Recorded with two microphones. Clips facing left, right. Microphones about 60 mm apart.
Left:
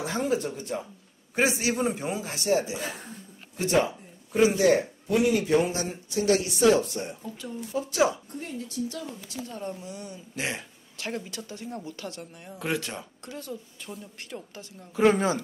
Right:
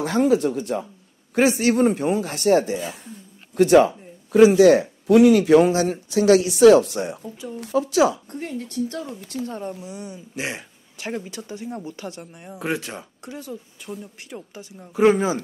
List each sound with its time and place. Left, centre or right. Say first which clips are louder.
0.0 s speech: right 9 dB; right
1.3 s a man's voice: right 7 dB; right
3.5 s speech: right 10 dB; right
8.3 s a woman's voice: right 5 dB; right
9.6 s speech: right 4 dB; centre
15.1 s speech: right 3 dB; centre